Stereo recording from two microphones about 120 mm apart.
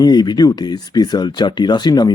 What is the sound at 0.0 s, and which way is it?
Speech, 35° left (ahead or behind).